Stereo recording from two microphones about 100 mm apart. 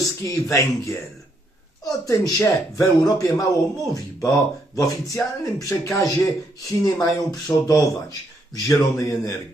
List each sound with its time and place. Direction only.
0.0 s speech: 30° left (ahead or behind)